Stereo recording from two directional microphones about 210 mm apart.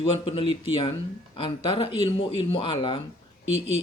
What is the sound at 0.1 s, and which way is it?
Speech, 25° left (ahead or behind).